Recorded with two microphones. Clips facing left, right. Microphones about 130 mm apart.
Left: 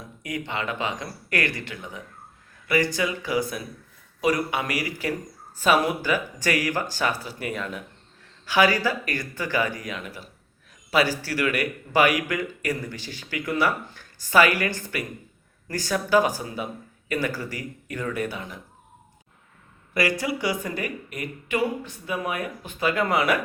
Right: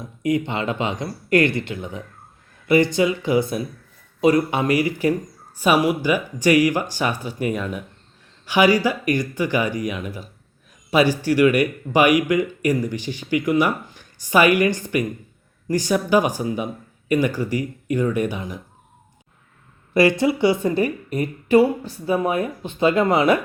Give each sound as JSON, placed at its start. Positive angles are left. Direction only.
{"t": 0.2, "sound": "speech", "side_deg": -25}
{"t": 5.5, "sound": "speech", "side_deg": -10}
{"t": 19.9, "sound": "speech", "side_deg": -25}